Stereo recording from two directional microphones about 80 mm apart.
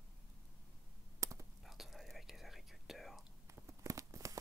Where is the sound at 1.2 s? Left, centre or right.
Right.